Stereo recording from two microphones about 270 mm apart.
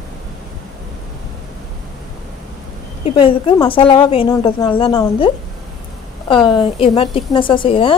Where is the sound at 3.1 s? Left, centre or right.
Centre.